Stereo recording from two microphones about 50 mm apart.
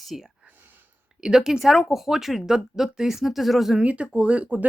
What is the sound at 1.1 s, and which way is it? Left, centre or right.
Speech, centre.